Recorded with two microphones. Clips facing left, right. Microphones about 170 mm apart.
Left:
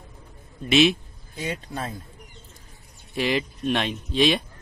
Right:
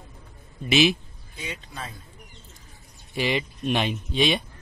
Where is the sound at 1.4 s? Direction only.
50° left (ahead or behind).